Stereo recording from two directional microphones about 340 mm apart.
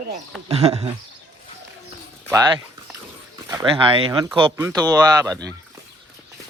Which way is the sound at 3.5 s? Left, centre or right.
Centre.